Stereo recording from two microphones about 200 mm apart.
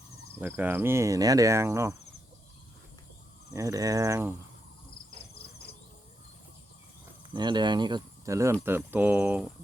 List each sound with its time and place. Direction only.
0.3 s cricket: 10° right (ahead or behind)
3.5 s cricket: 15° right (ahead or behind)
7.3 s speech: 20° right (ahead or behind)
8.6 s cricket: 10° right (ahead or behind)